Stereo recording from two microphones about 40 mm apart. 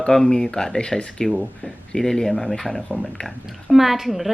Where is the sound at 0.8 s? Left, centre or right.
Left.